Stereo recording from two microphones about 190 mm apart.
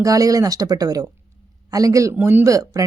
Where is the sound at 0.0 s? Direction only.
20° right (ahead or behind).